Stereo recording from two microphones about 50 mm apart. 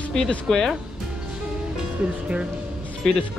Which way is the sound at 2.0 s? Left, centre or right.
Right.